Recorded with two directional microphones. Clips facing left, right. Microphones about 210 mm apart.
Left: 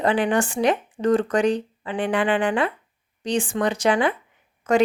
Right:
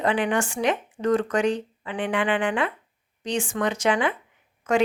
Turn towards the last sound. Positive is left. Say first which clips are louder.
# left 3 dB
turn(degrees=40)  # may be behind; listen again after turning